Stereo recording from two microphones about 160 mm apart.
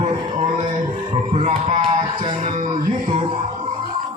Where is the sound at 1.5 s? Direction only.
40° right (ahead or behind).